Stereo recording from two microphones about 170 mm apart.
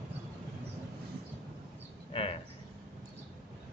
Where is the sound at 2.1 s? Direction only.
35° left (ahead or behind).